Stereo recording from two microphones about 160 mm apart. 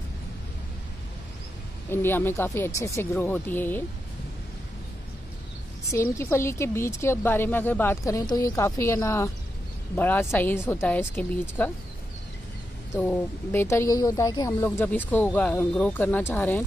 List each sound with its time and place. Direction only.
1.9 s speech: 15° left (ahead or behind)
5.9 s speech: 15° left (ahead or behind)
13.0 s speech: 10° left (ahead or behind)